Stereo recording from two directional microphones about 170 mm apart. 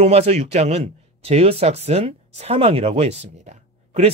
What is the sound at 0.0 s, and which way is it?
Speech, 40° right (ahead or behind).